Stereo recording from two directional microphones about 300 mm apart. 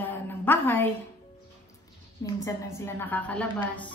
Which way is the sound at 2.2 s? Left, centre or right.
Centre.